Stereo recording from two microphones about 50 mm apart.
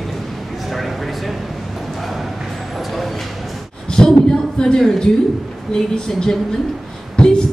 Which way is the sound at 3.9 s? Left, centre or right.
Centre.